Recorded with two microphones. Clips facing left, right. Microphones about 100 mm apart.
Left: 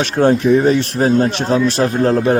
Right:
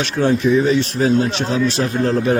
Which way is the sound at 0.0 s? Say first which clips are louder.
Left 3 dB; 45° left (ahead or behind).